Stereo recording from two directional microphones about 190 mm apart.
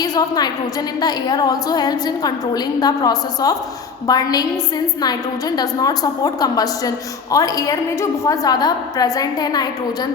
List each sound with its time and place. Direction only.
0.0 s a woman's voice: 20° left (ahead or behind)